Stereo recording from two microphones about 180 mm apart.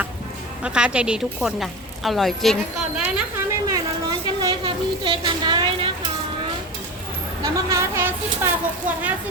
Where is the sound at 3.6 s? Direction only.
20° right (ahead or behind).